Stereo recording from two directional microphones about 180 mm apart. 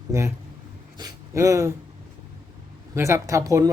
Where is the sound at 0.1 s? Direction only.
15° right (ahead or behind).